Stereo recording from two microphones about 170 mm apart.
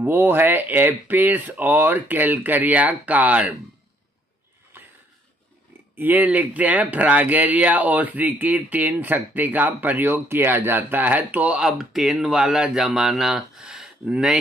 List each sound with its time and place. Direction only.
0.0 s speech: 10° right (ahead or behind)
5.9 s speech: 10° right (ahead or behind)